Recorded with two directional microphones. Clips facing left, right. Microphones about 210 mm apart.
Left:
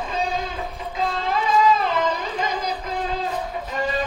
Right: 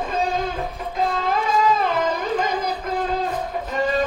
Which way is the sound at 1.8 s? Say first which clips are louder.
Right 1 dB; 55° right (ahead or behind).